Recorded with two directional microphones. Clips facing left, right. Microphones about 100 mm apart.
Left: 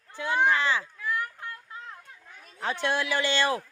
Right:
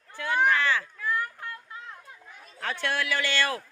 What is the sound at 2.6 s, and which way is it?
A man's voice, 20° left (ahead or behind).